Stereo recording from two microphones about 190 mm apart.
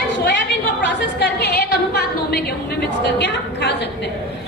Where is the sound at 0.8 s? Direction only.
60° left (ahead or behind).